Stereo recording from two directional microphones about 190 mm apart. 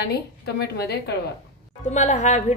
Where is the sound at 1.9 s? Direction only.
35° left (ahead or behind).